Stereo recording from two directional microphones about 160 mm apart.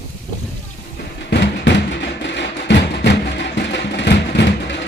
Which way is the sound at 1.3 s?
90° left.